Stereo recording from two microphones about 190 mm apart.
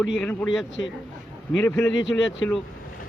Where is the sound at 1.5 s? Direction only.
15° left (ahead or behind).